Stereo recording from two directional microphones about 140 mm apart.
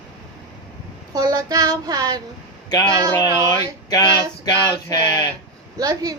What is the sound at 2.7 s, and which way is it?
Speech, 30° left (ahead or behind).